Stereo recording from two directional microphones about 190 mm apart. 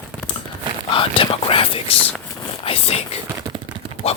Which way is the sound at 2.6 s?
30° left (ahead or behind).